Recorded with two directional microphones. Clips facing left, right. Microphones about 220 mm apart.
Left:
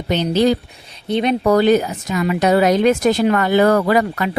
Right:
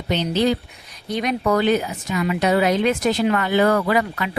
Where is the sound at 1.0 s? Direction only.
25° left (ahead or behind).